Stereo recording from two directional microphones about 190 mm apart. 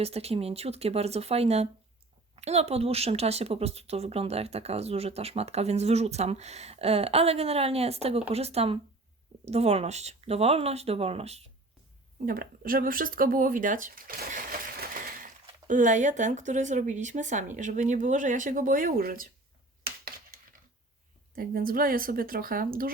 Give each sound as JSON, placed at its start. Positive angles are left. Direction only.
{"t": 0.0, "sound": "a woman's voice", "side_deg": -30}
{"t": 12.2, "sound": "speech", "side_deg": -50}
{"t": 21.3, "sound": "speech", "side_deg": -50}